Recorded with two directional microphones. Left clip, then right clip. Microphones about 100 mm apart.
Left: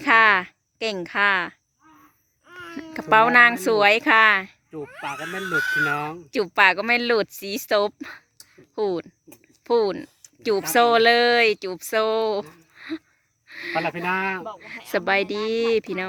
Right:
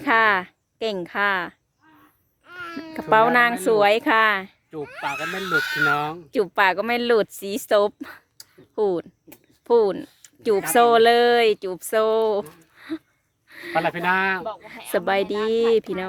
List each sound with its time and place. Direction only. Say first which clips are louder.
0.0 s a sound: left 2 dB; 5° right (ahead or behind)
2.4 s babbling: right 4 dB; 60° right (ahead or behind)
2.9 s speech: left 1 dB; 5° right (ahead or behind)
4.9 s speech: right 4 dB; 60° right (ahead or behind)
5.9 s speech: right 3 dB; 15° right (ahead or behind)
8.5 s a sound: right 2 dB; 15° right (ahead or behind)
9.6 s speech: right 3 dB; 10° right (ahead or behind)
14.6 s speech: right 1 dB; 10° right (ahead or behind)